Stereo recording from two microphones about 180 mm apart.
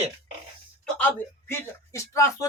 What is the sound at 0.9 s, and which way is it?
Speech, 10° left (ahead or behind).